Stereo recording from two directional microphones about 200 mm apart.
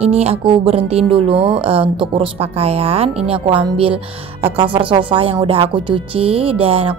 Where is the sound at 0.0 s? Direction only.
30° right (ahead or behind).